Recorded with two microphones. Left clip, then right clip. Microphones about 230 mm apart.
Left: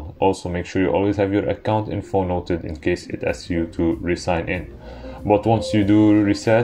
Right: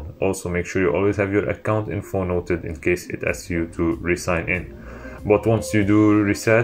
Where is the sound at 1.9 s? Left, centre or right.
Centre.